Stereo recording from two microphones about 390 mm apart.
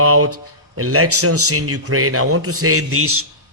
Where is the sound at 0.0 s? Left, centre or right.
Right.